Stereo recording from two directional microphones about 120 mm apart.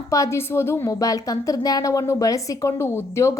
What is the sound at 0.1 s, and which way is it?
A woman's voice, 25° left (ahead or behind).